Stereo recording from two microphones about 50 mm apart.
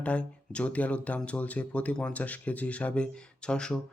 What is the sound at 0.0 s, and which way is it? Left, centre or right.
Speech, left.